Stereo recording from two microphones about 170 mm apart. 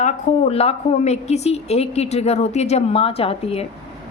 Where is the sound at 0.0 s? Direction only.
35° left (ahead or behind).